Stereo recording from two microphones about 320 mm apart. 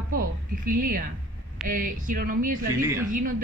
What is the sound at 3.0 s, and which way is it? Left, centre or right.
Speech, right.